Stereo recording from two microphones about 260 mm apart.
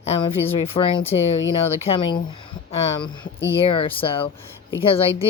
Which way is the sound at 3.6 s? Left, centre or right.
Left.